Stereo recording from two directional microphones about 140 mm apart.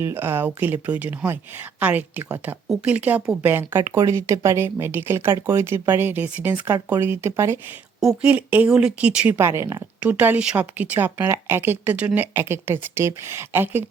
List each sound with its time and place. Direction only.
0.0 s speech: 15° right (ahead or behind)
8.0 s speech: 10° right (ahead or behind)